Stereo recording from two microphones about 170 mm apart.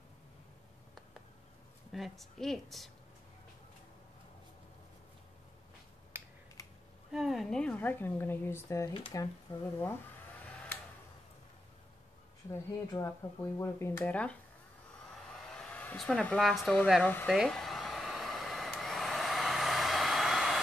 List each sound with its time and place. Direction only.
1.9 s a woman's voice: centre (ahead or behind)
6.1 s finger snapping: 15° right (ahead or behind)
7.1 s a woman's voice: centre (ahead or behind); by 9.3 s 20° left (ahead or behind)
12.4 s a woman's voice: 15° left (ahead or behind)
15.4 s speech: 5° left (ahead or behind)
17.3 s hair dryer: centre (ahead or behind)